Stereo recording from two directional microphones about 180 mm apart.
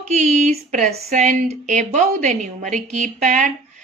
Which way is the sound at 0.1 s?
40° right (ahead or behind).